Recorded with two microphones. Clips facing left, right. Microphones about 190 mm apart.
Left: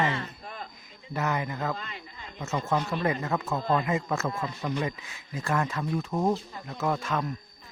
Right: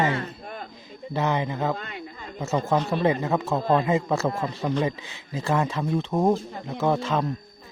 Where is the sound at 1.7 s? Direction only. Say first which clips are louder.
Right 5 dB; 55° right (ahead or behind).